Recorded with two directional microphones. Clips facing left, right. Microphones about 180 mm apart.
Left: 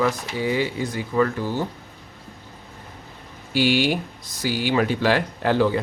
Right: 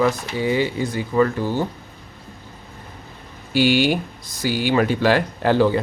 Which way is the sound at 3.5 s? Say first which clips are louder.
Right 3 dB; 50° right (ahead or behind).